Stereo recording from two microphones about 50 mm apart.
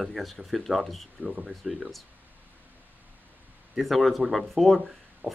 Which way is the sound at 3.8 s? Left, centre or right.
Centre.